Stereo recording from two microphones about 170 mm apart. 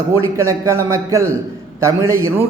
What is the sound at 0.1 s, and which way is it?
A man's voice, 15° right (ahead or behind).